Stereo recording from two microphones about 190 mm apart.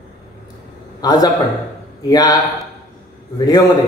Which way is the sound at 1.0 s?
20° left (ahead or behind).